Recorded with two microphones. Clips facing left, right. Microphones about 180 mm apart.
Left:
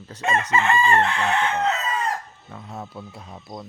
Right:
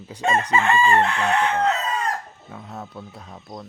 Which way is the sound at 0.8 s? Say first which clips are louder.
Right 1 dB; centre (ahead or behind).